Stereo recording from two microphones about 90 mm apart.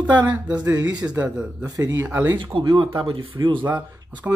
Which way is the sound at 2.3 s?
65° right (ahead or behind).